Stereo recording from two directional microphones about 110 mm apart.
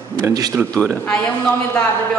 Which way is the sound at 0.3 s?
35° right (ahead or behind).